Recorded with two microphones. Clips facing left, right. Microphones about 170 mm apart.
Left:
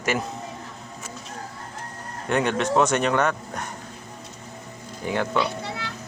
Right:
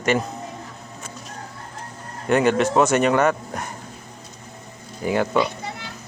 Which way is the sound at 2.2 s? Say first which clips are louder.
Right 5 dB; 5° right (ahead or behind).